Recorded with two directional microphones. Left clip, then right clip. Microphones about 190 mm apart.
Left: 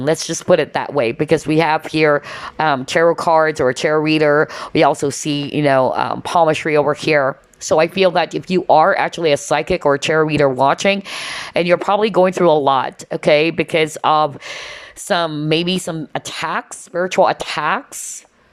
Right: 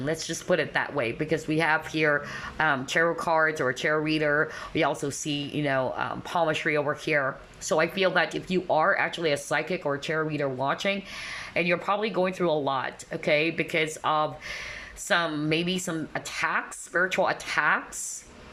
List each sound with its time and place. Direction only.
0.0 s speech: 30° left (ahead or behind)